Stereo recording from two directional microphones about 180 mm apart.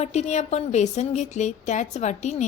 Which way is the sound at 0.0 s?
40° left (ahead or behind).